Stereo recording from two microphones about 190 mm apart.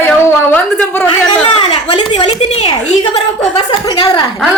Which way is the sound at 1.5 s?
30° left (ahead or behind).